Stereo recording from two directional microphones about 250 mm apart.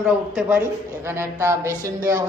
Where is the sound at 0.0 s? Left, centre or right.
Centre.